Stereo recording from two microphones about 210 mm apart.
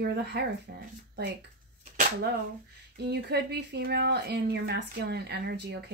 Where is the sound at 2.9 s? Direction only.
50° right (ahead or behind).